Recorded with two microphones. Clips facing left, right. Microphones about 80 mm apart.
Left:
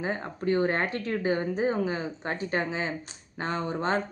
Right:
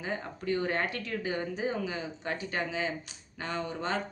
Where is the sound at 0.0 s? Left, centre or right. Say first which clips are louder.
Left 5 dB; left.